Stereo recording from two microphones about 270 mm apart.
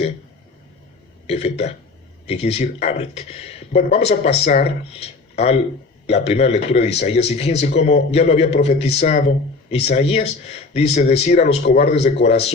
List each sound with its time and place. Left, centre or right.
1.3 s a man's voice: left